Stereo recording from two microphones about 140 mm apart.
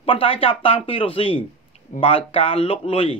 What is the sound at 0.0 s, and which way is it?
A man's voice, 40° left (ahead or behind).